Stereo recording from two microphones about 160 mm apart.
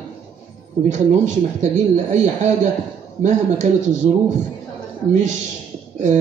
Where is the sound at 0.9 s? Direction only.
50° right (ahead or behind).